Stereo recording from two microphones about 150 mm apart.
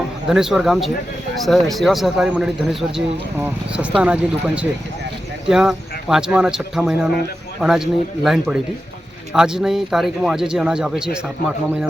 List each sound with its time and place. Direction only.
0.3 s speech: 5° right (ahead or behind)